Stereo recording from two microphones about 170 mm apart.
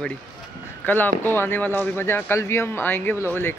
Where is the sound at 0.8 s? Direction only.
10° left (ahead or behind).